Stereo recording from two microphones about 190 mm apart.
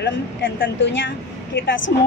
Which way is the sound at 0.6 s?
65° left (ahead or behind).